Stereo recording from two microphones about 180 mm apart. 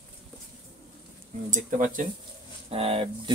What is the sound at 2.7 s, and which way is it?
Speech, 30° right (ahead or behind).